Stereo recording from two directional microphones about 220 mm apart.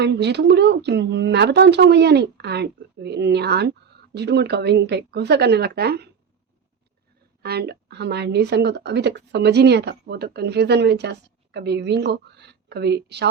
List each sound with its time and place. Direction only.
0.0 s speech: 50° right (ahead or behind)
7.4 s speech: 45° right (ahead or behind)